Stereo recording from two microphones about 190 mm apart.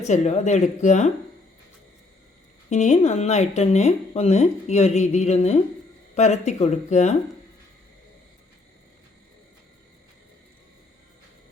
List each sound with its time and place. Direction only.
0.0 s speech: 35° left (ahead or behind)
2.6 s speech: 35° left (ahead or behind)